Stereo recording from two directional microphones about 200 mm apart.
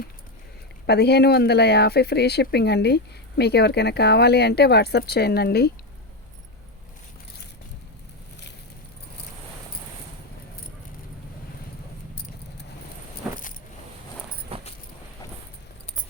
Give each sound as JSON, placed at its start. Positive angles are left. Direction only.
{"t": 0.9, "sound": "speech", "side_deg": 55}
{"t": 13.2, "sound": "keys jangling", "side_deg": -5}
{"t": 14.5, "sound": "vehicle", "side_deg": -30}